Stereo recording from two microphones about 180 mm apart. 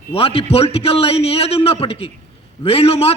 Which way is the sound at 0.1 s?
30° left (ahead or behind).